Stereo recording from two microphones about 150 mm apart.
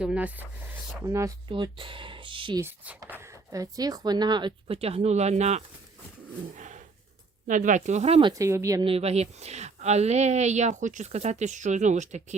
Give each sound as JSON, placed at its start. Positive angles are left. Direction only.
{"t": 0.0, "sound": "speech", "side_deg": -10}
{"t": 1.0, "sound": "speech", "side_deg": -20}
{"t": 1.5, "sound": "speech", "side_deg": -35}
{"t": 2.6, "sound": "speech", "side_deg": -10}
{"t": 6.6, "sound": "a sound", "side_deg": -55}
{"t": 7.4, "sound": "speech", "side_deg": -60}
{"t": 8.3, "sound": "speech", "side_deg": -20}
{"t": 8.8, "sound": "speech", "side_deg": -40}